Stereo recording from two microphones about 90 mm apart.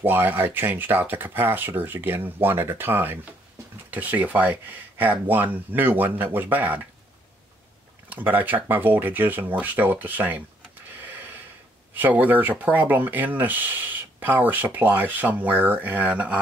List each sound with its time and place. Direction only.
0.0 s speech: 25° right (ahead or behind)
8.1 s speech: 20° right (ahead or behind)
11.0 s a sound: 20° right (ahead or behind)
11.9 s speech: 20° right (ahead or behind)